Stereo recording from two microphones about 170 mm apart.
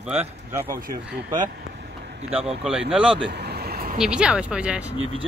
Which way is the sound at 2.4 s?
5° right (ahead or behind).